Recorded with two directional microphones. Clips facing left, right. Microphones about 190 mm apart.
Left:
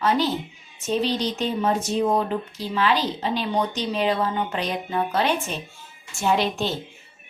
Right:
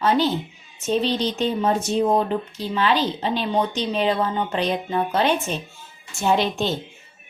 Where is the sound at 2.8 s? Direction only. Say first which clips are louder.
Right 1 dB; 25° right (ahead or behind).